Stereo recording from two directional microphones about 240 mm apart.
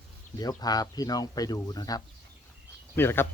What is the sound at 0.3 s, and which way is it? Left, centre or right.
Speech, centre.